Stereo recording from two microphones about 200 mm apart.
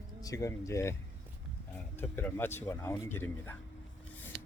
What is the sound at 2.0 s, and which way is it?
Speech, 10° left (ahead or behind).